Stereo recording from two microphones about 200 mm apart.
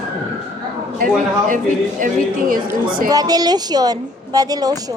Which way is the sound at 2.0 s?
40° right (ahead or behind).